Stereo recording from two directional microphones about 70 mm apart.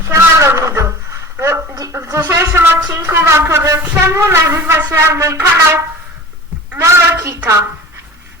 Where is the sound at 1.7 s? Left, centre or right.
Right.